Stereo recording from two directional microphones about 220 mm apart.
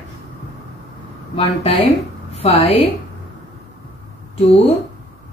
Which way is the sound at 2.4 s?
25° left (ahead or behind).